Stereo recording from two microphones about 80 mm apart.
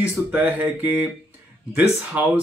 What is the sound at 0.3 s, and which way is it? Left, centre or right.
Speech, centre.